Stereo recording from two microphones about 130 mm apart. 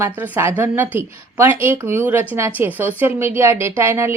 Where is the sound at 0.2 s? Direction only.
15° right (ahead or behind).